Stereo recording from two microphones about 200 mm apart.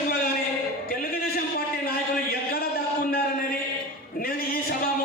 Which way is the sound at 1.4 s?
50° left (ahead or behind).